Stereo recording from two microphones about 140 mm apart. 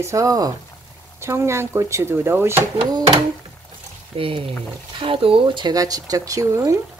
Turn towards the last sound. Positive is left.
turn(degrees=-25)  # may be behind; listen again after turning